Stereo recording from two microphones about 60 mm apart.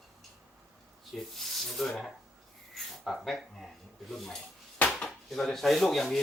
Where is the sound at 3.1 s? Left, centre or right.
Centre.